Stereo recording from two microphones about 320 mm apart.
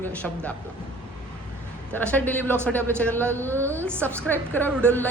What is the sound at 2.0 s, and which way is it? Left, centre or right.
Speech, centre.